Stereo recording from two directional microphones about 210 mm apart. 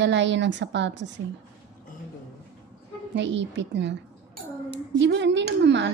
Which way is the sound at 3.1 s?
60° right (ahead or behind).